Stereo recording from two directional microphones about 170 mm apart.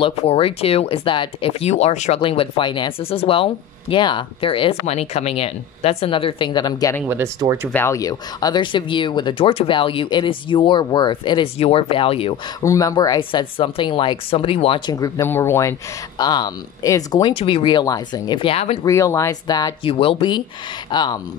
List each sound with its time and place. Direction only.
0.0 s speech: 35° left (ahead or behind)
7.1 s speech: 15° right (ahead or behind)
7.7 s speech: 15° left (ahead or behind); by 12.4 s 30° left (ahead or behind)
12.6 s speech: 20° left (ahead or behind); by 18.8 s 35° left (ahead or behind)
18.9 s speech: 20° left (ahead or behind)